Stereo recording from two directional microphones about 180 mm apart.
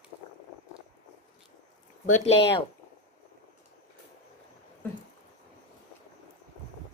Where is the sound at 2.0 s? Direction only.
40° left (ahead or behind).